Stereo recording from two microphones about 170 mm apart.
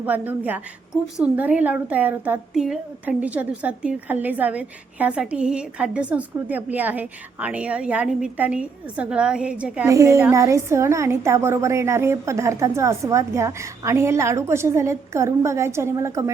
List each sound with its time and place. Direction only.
0.0 s a woman's voice: 10° right (ahead or behind)